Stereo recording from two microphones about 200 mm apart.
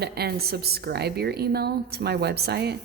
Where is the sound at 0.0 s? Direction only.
50° right (ahead or behind).